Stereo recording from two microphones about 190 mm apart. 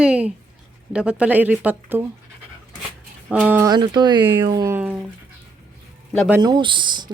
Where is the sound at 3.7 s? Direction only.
25° right (ahead or behind).